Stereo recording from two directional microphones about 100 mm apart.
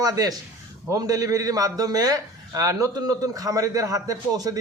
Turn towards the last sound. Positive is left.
turn(degrees=-40)  # may be behind; listen again after turning